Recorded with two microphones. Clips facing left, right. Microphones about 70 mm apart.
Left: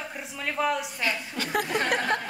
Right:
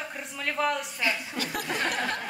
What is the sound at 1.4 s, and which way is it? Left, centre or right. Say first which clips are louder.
Speech: left 3 dB; left.